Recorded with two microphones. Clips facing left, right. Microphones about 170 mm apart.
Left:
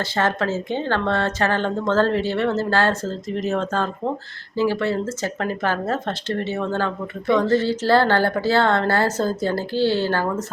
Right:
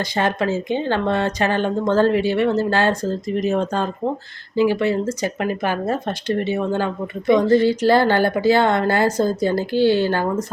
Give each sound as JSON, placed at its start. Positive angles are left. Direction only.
{"t": 0.0, "sound": "speech", "side_deg": -15}